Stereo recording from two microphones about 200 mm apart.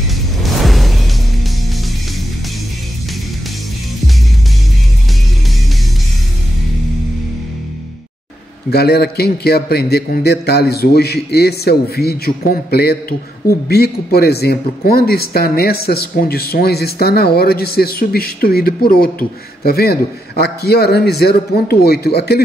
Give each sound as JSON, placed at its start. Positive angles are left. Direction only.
{"t": 0.4, "sound": "music", "side_deg": 0}
{"t": 8.6, "sound": "speech", "side_deg": 50}